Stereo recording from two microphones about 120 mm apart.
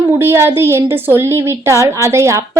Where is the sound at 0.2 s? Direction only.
20° right (ahead or behind).